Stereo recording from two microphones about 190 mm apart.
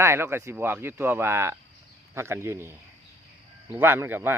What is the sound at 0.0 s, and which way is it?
Speech, 15° right (ahead or behind).